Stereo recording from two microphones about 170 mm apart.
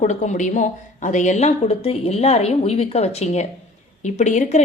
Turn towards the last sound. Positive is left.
turn(degrees=45)  # may be behind; listen again after turning